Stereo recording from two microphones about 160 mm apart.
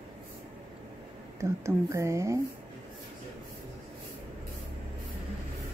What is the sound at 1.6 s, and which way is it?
Speech, 20° right (ahead or behind).